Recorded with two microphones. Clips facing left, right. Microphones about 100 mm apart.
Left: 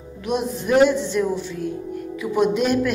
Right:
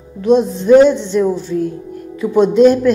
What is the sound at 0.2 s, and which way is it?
A woman's voice, 30° right (ahead or behind).